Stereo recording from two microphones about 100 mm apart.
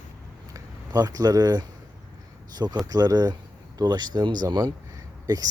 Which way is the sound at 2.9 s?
40° right (ahead or behind).